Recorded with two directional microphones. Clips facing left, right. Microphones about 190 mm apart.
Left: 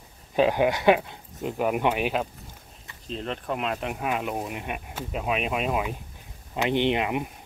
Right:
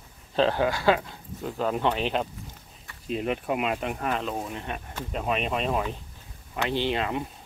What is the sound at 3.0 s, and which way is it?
Speech, 10° right (ahead or behind).